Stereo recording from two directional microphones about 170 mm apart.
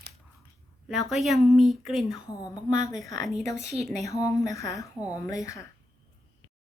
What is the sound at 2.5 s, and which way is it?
Speech, 20° left (ahead or behind).